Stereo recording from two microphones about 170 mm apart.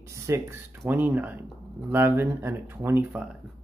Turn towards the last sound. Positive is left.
turn(degrees=-10)  # may be behind; listen again after turning